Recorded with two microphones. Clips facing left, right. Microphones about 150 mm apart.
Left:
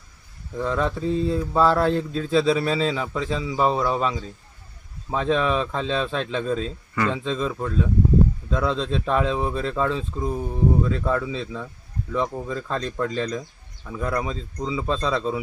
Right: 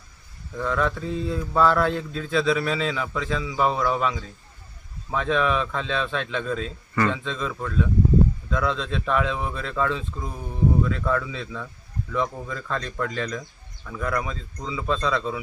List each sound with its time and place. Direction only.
0.5 s mantra: 30° left (ahead or behind)
13.8 s speech: 25° left (ahead or behind)